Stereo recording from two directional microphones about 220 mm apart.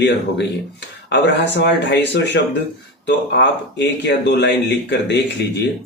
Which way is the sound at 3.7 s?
50° left (ahead or behind).